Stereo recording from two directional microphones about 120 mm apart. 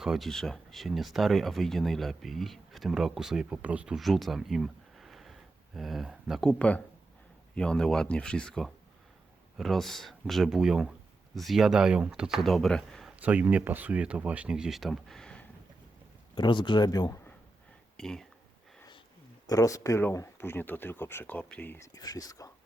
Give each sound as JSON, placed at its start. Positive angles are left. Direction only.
{"t": 0.0, "sound": "speech", "side_deg": 0}
{"t": 6.5, "sound": "speech", "side_deg": 10}
{"t": 13.1, "sound": "speech", "side_deg": -15}
{"t": 16.3, "sound": "speech", "side_deg": 40}
{"t": 17.9, "sound": "speech", "side_deg": 5}
{"t": 19.5, "sound": "speech", "side_deg": 30}
{"t": 21.9, "sound": "speech", "side_deg": 30}